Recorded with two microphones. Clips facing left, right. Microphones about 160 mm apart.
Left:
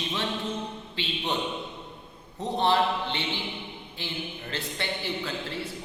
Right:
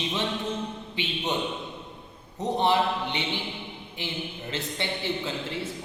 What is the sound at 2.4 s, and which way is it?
A man's voice, 15° right (ahead or behind).